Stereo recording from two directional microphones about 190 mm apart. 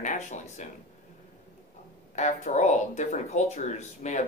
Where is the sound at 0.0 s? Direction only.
40° left (ahead or behind).